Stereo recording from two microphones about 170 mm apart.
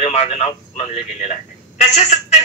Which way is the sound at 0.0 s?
40° left (ahead or behind).